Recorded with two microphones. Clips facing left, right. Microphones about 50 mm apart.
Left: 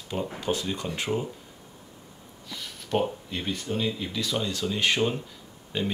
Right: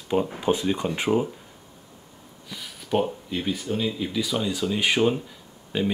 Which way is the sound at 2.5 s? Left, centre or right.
Centre.